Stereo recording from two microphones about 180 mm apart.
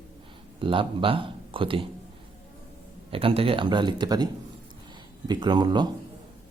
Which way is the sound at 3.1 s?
30° right (ahead or behind).